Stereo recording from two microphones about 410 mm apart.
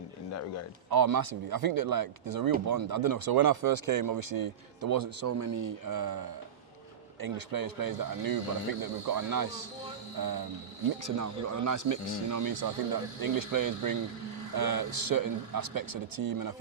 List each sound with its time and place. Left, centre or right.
0.9 s speech: right
5.2 s speech: right
11.0 s speech: right
14.5 s speech: right